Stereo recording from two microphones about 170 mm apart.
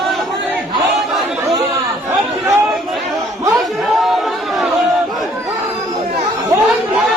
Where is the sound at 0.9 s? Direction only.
Centre (ahead or behind).